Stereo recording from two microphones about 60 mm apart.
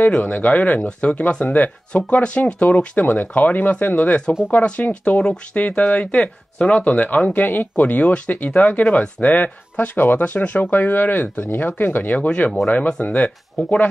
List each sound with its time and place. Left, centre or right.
0.0 s speech: left